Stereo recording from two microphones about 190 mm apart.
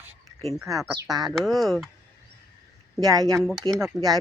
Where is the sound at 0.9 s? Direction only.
20° right (ahead or behind).